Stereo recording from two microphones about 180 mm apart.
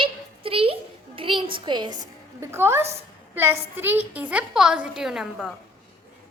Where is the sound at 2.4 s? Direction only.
15° right (ahead or behind).